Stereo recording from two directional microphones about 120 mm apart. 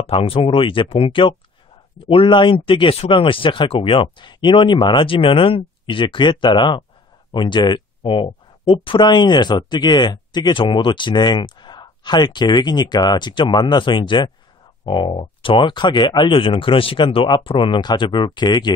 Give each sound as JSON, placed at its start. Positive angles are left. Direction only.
{"t": 0.0, "sound": "speech", "side_deg": 50}